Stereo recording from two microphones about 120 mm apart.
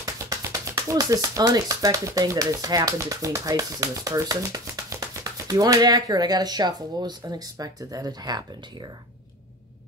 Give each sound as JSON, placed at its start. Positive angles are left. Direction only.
{"t": 0.0, "sound": "speech", "side_deg": -30}